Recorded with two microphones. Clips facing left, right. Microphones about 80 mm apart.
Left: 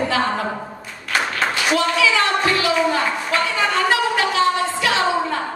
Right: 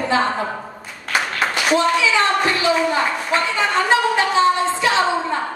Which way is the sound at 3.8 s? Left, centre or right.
Right.